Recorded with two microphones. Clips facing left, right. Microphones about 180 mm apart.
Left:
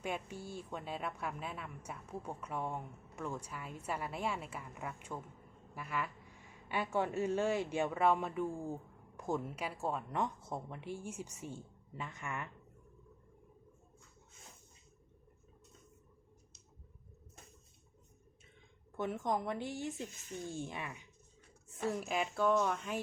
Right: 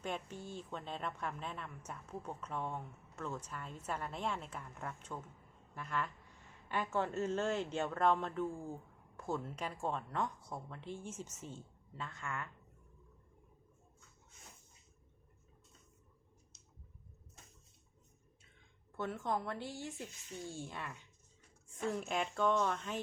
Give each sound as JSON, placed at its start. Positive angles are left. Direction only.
{"t": 0.0, "sound": "a woman's voice", "side_deg": 10}
{"t": 18.9, "sound": "a woman's voice", "side_deg": 15}